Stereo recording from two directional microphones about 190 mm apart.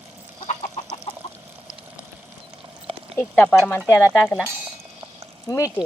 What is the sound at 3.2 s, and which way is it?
Speech, 10° left (ahead or behind).